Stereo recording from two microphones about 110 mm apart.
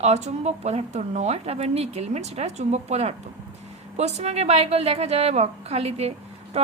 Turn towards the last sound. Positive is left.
turn(degrees=-70)  # may be behind; listen again after turning